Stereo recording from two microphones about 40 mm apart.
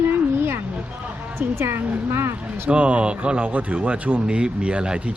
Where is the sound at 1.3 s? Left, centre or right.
Right.